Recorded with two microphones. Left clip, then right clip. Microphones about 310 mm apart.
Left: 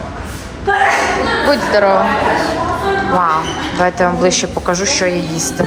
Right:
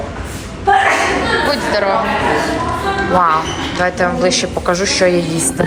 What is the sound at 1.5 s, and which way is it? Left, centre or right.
Speech, centre.